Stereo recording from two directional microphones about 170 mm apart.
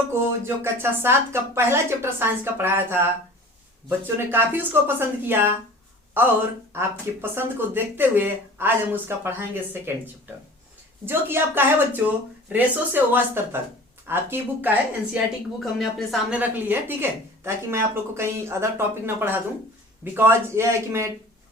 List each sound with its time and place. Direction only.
0.1 s a woman's voice: 15° right (ahead or behind)
11.0 s a woman's voice: 15° right (ahead or behind)
15.6 s a woman's voice: centre (ahead or behind); by 21.1 s 15° right (ahead or behind)